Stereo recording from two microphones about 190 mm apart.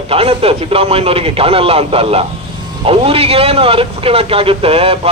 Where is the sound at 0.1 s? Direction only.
30° right (ahead or behind).